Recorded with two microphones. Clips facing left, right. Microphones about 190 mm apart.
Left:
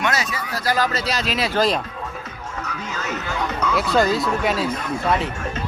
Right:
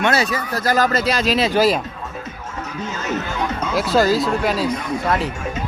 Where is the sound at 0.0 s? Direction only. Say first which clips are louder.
Right 5 dB; 30° right (ahead or behind).